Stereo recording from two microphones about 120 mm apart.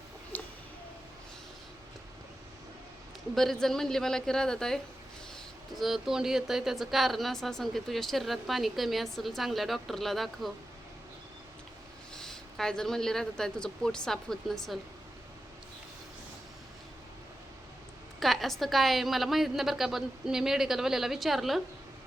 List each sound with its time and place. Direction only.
0.3 s a sound: 15° left (ahead or behind)
3.3 s speech: centre (ahead or behind)
12.1 s speech: 5° left (ahead or behind)
18.2 s speech: centre (ahead or behind)